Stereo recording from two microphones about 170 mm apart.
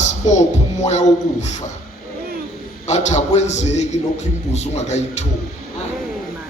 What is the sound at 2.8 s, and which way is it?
A man's voice, 45° left (ahead or behind).